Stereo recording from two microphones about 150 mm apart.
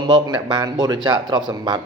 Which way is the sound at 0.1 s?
30° right (ahead or behind).